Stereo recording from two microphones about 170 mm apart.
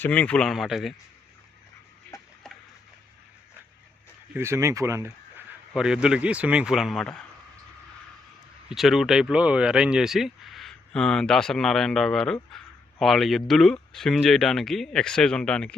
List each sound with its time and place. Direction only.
0.0 s speech: 10° left (ahead or behind)
2.1 s a sound: 20° left (ahead or behind)
4.4 s speech: 15° right (ahead or behind)
5.7 s speech: 5° right (ahead or behind)
8.7 s speech: centre (ahead or behind)